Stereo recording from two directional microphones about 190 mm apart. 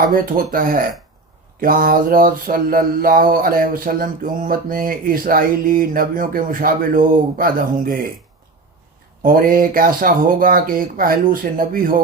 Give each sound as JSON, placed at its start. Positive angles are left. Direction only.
{"t": 0.1, "sound": "mantra", "side_deg": -45}
{"t": 9.2, "sound": "mantra", "side_deg": -45}